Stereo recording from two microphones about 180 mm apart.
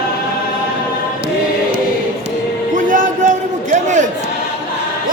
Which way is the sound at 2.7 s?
45° right (ahead or behind).